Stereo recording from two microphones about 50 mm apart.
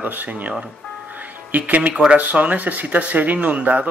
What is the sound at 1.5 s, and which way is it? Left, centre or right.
Speech, right.